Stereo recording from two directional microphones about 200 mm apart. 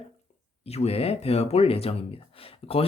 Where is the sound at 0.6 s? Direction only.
30° left (ahead or behind).